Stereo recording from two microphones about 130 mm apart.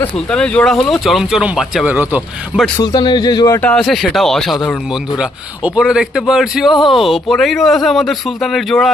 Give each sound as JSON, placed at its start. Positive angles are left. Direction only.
{"t": 0.0, "sound": "a man's voice", "side_deg": 5}
{"t": 2.8, "sound": "a man's voice", "side_deg": 35}
{"t": 3.5, "sound": "a man's voice", "side_deg": 10}
{"t": 5.1, "sound": "a man's voice", "side_deg": -5}